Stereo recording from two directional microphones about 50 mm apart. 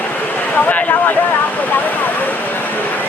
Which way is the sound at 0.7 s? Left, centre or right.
Left.